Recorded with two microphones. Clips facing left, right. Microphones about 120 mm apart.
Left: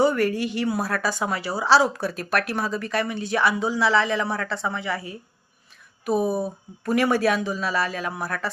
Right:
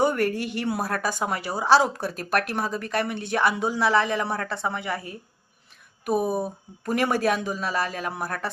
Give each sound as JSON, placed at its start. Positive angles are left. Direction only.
{"t": 0.0, "sound": "speech", "side_deg": -50}
{"t": 6.8, "sound": "speech", "side_deg": -45}